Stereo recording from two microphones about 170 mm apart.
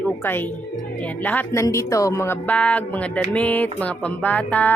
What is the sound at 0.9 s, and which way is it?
Speech, 10° left (ahead or behind).